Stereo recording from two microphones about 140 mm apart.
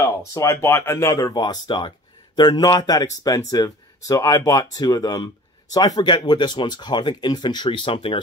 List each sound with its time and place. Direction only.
0.3 s speech: 20° left (ahead or behind); by 8.2 s 40° left (ahead or behind)